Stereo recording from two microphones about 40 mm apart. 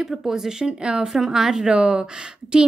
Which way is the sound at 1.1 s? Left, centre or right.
Centre.